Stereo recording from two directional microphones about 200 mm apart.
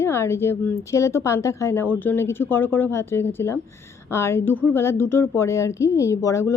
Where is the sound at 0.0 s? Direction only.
10° left (ahead or behind).